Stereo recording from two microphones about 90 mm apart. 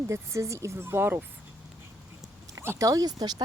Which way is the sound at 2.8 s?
45° right (ahead or behind).